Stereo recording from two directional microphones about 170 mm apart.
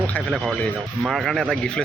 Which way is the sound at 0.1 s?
Centre (ahead or behind).